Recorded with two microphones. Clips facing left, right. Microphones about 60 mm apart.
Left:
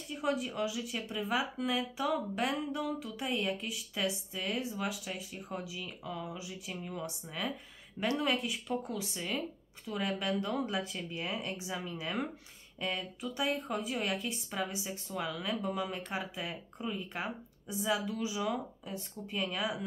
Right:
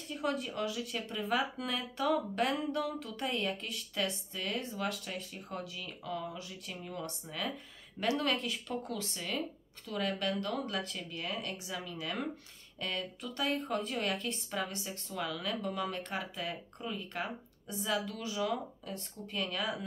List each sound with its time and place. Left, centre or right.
0.1 s speech: centre; by 12.2 s left
12.8 s speech: centre